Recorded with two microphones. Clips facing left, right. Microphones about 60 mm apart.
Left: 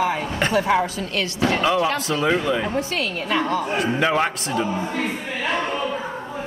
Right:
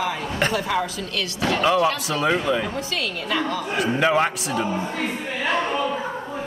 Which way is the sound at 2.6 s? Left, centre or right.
Left.